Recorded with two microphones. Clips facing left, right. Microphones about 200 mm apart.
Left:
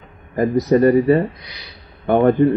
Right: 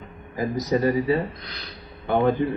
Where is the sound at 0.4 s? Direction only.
60° left (ahead or behind).